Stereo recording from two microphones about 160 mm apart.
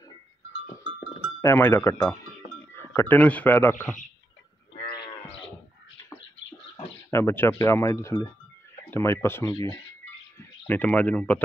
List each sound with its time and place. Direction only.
1.4 s speech: 15° left (ahead or behind)
4.7 s livestock: 70° left (ahead or behind)
7.1 s speech: 15° left (ahead or behind)
10.7 s speech: 10° left (ahead or behind)